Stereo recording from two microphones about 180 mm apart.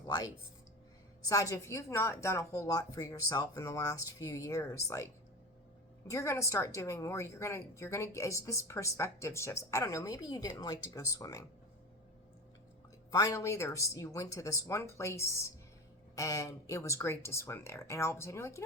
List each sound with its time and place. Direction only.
0.0 s a woman's voice: 20° left (ahead or behind)
6.1 s a woman's voice: 15° left (ahead or behind)
13.1 s a woman's voice: 20° left (ahead or behind)